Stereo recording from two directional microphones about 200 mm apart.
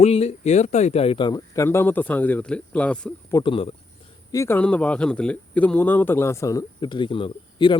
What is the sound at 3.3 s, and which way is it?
Speech, 25° left (ahead or behind).